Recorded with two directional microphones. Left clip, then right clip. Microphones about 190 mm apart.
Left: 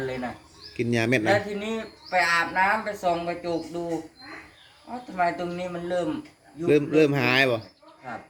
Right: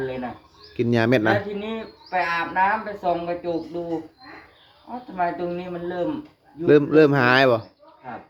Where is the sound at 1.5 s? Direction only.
15° left (ahead or behind).